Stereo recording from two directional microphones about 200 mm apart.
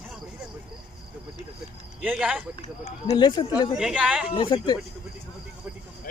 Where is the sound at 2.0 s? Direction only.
5° right (ahead or behind).